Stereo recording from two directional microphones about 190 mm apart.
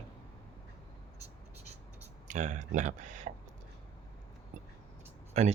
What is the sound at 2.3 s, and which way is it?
Speech, 40° right (ahead or behind).